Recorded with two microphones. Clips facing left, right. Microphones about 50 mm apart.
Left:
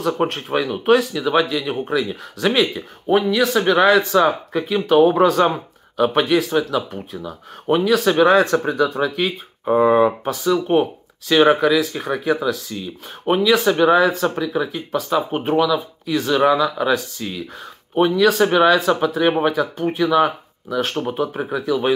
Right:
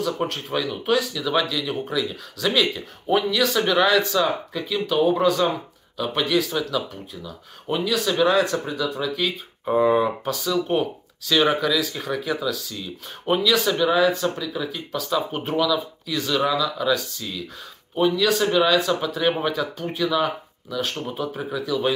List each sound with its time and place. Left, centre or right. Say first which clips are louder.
0.0 s speech: left 5 dB; left
9.7 s speech: left 5 dB; centre
12.8 s speech: left 5 dB; left